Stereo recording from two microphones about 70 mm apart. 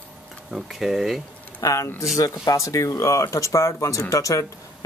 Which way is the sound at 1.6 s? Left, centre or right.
Left.